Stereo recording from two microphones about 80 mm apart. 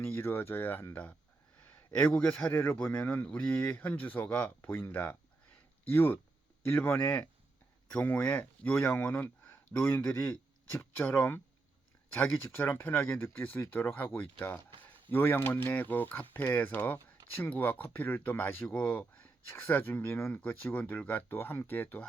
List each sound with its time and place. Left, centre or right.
0.0 s speech: left
1.6 s speech: centre
3.5 s speech: left
15.1 s speech: left